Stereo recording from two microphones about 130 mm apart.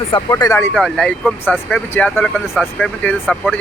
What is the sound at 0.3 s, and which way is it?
Speech, 30° left (ahead or behind).